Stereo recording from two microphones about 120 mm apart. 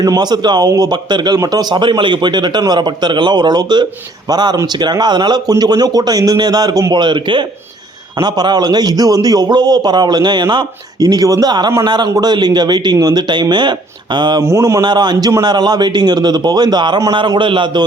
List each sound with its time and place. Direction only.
0.0 s speech: 35° right (ahead or behind)
14.4 s speech: 25° right (ahead or behind); by 17.8 s 40° right (ahead or behind)